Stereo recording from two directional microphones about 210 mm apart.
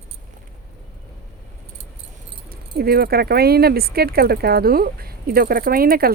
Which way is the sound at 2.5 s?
45° right (ahead or behind).